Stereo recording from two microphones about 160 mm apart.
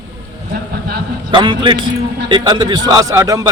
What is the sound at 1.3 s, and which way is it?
A man's voice, 30° right (ahead or behind).